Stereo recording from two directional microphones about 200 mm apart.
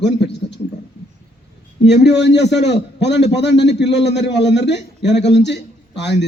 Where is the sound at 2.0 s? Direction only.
60° left (ahead or behind).